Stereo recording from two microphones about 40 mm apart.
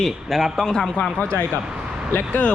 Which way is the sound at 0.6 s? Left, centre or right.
Centre.